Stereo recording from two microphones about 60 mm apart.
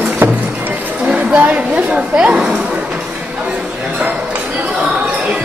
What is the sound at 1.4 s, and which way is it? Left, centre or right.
A woman's voice, right.